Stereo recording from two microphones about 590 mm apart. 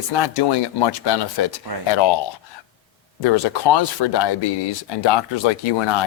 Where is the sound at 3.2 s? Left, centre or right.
Left.